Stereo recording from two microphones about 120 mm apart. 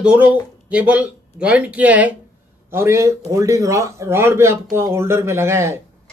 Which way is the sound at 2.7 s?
25° right (ahead or behind).